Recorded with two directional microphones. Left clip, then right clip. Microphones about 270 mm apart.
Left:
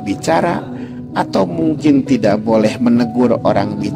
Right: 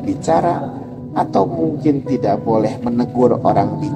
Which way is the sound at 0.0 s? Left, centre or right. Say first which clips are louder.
Left 1 dB; left.